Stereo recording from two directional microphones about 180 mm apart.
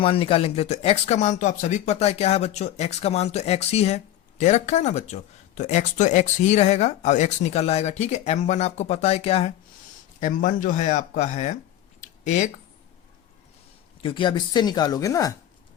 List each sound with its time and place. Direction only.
0.0 s speech: 30° left (ahead or behind)
10.2 s speech: 45° left (ahead or behind)
11.9 s a sound: 40° left (ahead or behind)
14.0 s speech: 25° left (ahead or behind)